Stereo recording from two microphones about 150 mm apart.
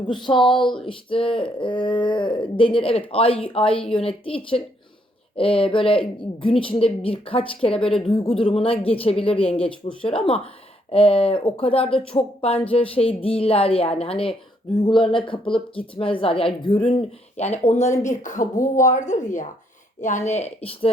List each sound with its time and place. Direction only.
0.1 s a woman's voice: 30° left (ahead or behind)